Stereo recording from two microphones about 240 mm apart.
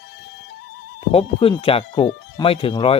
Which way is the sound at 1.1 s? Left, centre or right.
Left.